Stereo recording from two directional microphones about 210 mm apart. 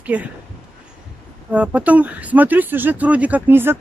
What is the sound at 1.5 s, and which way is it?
Speech, 5° right (ahead or behind).